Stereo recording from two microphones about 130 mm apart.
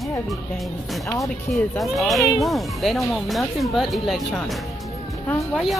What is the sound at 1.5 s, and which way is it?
Speech, centre (ahead or behind).